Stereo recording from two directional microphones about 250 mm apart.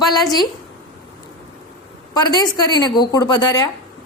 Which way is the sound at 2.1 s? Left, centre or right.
Centre.